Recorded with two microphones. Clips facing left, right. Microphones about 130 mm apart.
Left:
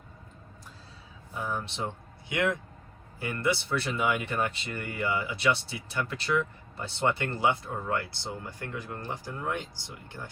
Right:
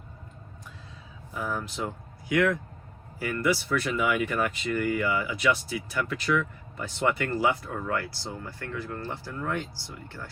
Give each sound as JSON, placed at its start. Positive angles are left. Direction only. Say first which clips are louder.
{"t": 2.3, "sound": "speech", "louder": "right 4 dB", "side_deg": 25}